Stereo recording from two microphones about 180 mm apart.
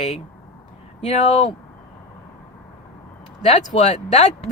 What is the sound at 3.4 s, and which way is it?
Speech, 40° left (ahead or behind).